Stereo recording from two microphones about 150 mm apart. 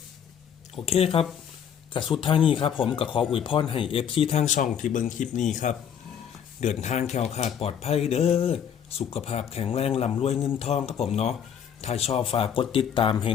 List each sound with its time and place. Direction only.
0.9 s speech: 40° left (ahead or behind)
6.8 s speech: 50° left (ahead or behind)